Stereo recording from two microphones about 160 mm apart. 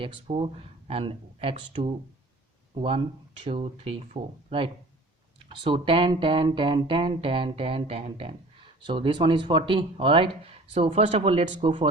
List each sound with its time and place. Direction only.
0.0 s speech: 35° right (ahead or behind)